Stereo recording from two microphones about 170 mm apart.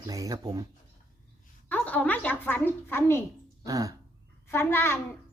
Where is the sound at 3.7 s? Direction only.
20° right (ahead or behind).